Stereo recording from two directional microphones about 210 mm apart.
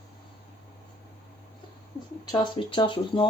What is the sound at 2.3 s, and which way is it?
Speech, 20° left (ahead or behind).